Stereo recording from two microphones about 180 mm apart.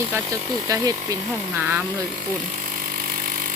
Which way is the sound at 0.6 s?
20° right (ahead or behind).